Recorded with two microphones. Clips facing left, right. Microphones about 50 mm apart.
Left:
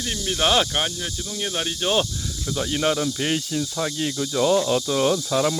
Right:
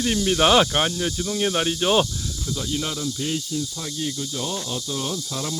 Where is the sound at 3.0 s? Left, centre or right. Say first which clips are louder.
Left 3 dB; left.